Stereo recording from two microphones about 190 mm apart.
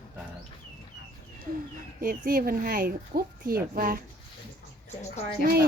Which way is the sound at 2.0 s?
45° right (ahead or behind).